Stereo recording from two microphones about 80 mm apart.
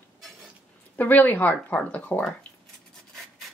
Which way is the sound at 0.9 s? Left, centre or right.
Left.